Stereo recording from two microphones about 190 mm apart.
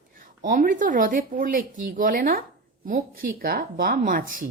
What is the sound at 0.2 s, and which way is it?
Speech, 45° right (ahead or behind).